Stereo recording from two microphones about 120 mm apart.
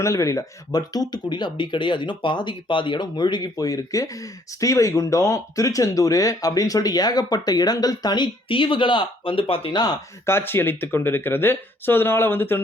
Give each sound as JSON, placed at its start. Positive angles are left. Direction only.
{"t": 0.0, "sound": "speech", "side_deg": 25}
{"t": 10.2, "sound": "speech", "side_deg": 20}